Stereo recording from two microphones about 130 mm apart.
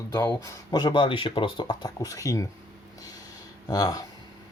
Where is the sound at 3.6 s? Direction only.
30° left (ahead or behind).